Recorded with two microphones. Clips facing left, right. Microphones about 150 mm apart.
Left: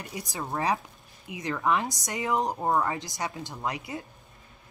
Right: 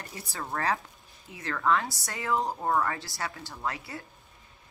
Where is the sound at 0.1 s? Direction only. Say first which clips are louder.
Left 3 dB; 15° left (ahead or behind).